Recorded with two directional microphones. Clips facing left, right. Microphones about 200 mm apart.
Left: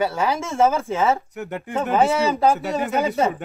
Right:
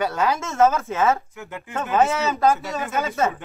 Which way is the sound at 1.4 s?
40° left (ahead or behind).